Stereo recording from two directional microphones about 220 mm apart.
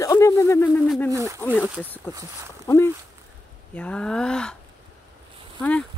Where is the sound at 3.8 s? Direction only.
5° left (ahead or behind).